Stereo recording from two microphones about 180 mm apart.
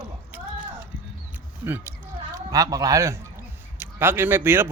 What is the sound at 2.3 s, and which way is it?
A man's voice, 20° right (ahead or behind).